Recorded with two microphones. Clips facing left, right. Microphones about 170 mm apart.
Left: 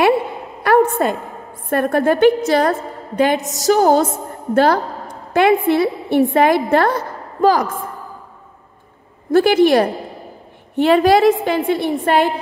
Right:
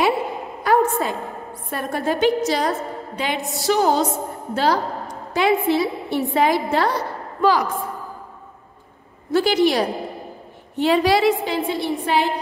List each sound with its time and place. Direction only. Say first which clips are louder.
0.7 s a sound: left 4 dB; 60° left (ahead or behind)
1.7 s a woman's voice: left 8 dB; 55° left (ahead or behind)
3.2 s a woman's voice: left 10 dB; 45° left (ahead or behind)
4.6 s a woman's voice: left 5 dB; 55° left (ahead or behind)
9.3 s a woman's voice: left 6 dB; 55° left (ahead or behind)